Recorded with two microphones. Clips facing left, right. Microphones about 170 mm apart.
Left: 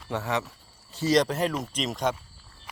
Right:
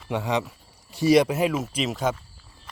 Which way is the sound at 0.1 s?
15° right (ahead or behind).